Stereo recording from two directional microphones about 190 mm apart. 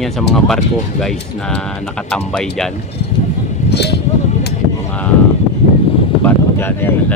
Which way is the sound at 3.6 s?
60° left (ahead or behind).